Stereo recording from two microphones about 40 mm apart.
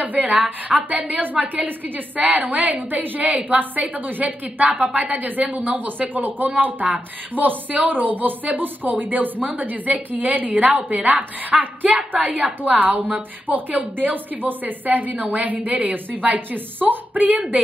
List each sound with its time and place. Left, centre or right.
0.0 s a woman's voice: right